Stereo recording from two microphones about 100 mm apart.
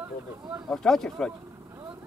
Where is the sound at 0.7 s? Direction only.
5° left (ahead or behind).